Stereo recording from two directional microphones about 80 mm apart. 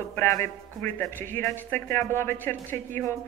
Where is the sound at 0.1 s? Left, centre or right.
Left.